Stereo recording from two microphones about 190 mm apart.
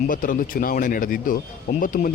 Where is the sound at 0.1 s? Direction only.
45° left (ahead or behind).